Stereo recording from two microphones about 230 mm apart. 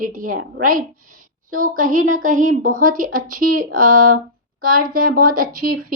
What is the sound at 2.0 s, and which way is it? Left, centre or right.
Speech, right.